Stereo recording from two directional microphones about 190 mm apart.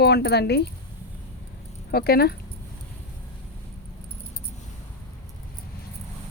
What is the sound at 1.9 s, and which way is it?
Speech, 55° left (ahead or behind).